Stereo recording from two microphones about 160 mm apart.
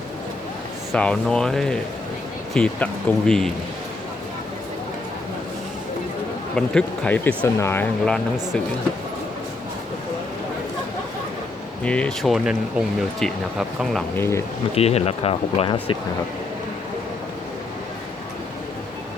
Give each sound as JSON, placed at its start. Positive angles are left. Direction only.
{"t": 0.9, "sound": "speech", "side_deg": 5}
{"t": 6.6, "sound": "speech", "side_deg": 5}
{"t": 11.8, "sound": "speech", "side_deg": 5}
{"t": 14.2, "sound": "speech", "side_deg": 15}
{"t": 14.8, "sound": "speech", "side_deg": 40}